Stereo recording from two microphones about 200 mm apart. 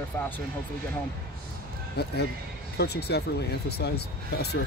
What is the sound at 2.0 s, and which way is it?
Speech, 55° left (ahead or behind).